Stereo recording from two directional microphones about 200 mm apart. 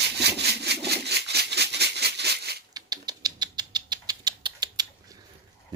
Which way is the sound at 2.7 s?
20° right (ahead or behind).